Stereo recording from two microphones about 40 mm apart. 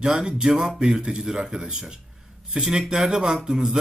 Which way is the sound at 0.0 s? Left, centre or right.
Centre.